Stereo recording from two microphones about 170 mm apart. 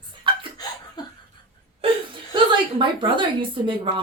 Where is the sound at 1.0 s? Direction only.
25° left (ahead or behind).